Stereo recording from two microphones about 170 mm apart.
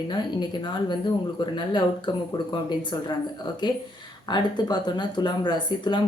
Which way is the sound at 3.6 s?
25° left (ahead or behind).